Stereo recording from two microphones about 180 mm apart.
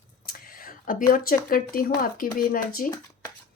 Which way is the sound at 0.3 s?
50° left (ahead or behind).